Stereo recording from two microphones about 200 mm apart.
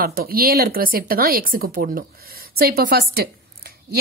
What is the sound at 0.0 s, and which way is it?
Speech, 50° right (ahead or behind).